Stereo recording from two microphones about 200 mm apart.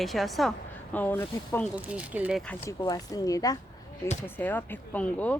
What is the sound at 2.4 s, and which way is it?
Speech, 10° left (ahead or behind).